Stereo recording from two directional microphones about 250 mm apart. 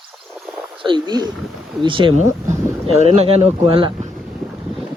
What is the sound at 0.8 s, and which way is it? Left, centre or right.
Speech, centre.